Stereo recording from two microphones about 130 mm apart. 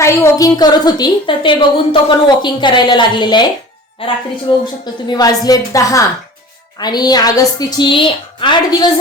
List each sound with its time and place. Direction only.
0.0 s a woman's voice: 25° left (ahead or behind); by 4.2 s 45° left (ahead or behind)
4.6 s a woman's voice: 30° left (ahead or behind)